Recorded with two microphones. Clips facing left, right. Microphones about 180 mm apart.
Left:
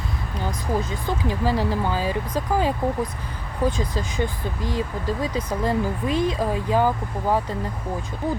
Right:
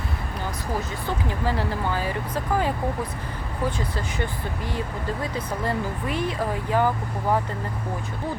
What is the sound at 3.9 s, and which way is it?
Speech, 15° left (ahead or behind).